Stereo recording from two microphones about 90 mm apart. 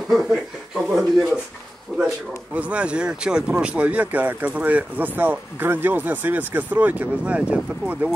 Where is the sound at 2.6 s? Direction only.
15° right (ahead or behind).